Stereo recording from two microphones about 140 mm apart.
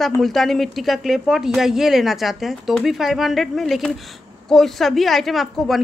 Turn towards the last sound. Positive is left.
turn(degrees=0)  # may be behind; listen again after turning